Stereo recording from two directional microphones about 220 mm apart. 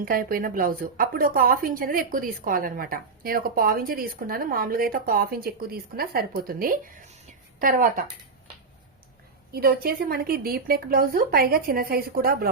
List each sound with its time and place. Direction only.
0.0 s a woman's voice: 40° right (ahead or behind)
9.5 s speech: 45° right (ahead or behind)